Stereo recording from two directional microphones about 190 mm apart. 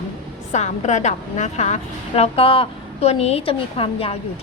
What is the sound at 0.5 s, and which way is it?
A woman's voice, 40° left (ahead or behind).